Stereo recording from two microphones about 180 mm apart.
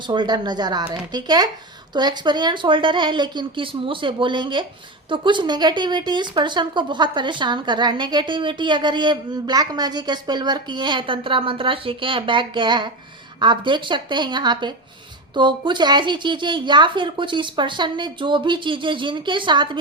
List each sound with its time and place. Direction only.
0.1 s speech: 25° right (ahead or behind)